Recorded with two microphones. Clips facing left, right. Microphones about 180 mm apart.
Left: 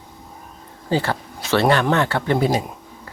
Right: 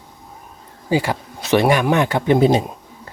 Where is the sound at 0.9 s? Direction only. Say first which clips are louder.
Right 2 dB; 10° right (ahead or behind).